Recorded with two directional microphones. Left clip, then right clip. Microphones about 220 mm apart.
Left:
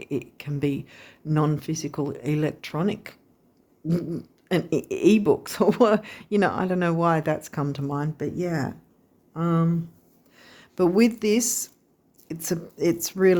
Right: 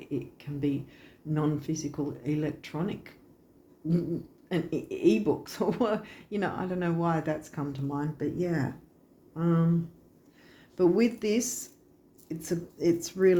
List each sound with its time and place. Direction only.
0.0 s speech: 45° left (ahead or behind)
4.4 s speech: 50° left (ahead or behind); by 11.6 s 30° left (ahead or behind)
12.3 s speech: 45° left (ahead or behind)